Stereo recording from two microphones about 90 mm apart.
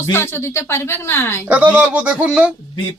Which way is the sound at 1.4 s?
20° right (ahead or behind).